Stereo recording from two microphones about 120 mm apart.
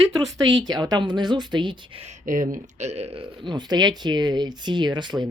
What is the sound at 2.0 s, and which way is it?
Speech, 80° right.